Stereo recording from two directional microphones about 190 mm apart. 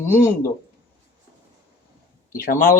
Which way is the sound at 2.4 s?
45° left (ahead or behind).